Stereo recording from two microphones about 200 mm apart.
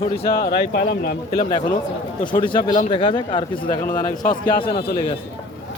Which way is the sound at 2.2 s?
25° left (ahead or behind).